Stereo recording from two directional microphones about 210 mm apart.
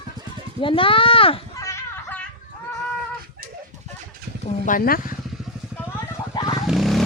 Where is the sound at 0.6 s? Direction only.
25° left (ahead or behind).